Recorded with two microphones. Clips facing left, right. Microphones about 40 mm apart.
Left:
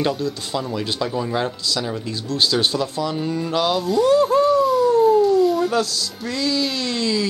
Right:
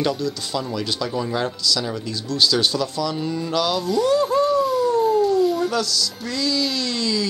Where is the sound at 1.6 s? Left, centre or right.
Left.